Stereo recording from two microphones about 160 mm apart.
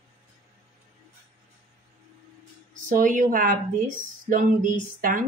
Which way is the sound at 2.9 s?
55° right (ahead or behind).